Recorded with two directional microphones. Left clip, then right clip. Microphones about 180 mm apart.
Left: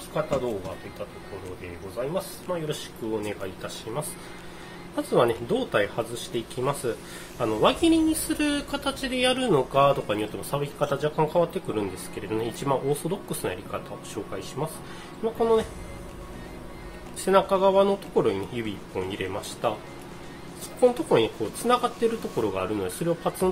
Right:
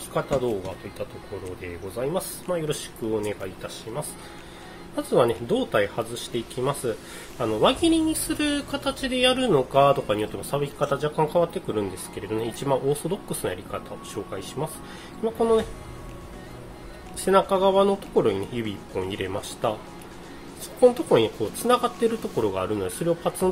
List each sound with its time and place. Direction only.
2.0 s speech: 35° right (ahead or behind)
3.3 s speech: centre (ahead or behind)
4.9 s speech: 15° right (ahead or behind)
17.2 s speech: 15° right (ahead or behind)
20.8 s speech: 15° right (ahead or behind)